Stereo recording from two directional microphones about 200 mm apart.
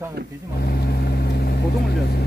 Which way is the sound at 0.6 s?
55° left (ahead or behind).